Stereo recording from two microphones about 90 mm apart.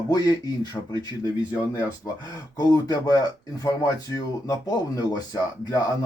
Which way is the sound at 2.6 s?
45° left (ahead or behind).